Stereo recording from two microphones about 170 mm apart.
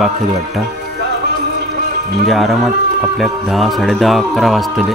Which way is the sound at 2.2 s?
Centre (ahead or behind).